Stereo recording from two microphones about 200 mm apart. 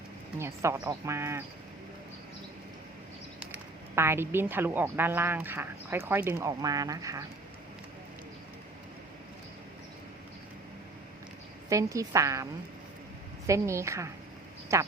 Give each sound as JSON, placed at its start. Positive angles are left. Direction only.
{"t": 0.3, "sound": "speech", "side_deg": -15}
{"t": 3.4, "sound": "speech", "side_deg": -10}
{"t": 11.7, "sound": "speech", "side_deg": -15}
{"t": 13.5, "sound": "speech", "side_deg": -15}